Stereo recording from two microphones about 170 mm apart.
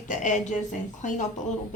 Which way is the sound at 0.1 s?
45° left (ahead or behind).